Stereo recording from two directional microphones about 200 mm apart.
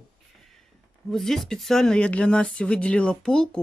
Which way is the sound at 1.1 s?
Centre (ahead or behind).